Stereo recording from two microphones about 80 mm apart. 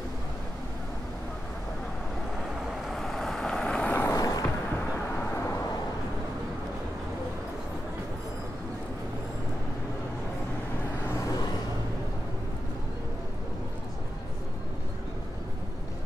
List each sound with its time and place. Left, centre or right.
2.7 s vehicle: centre
4.1 s a sound: left
5.1 s vehicle: left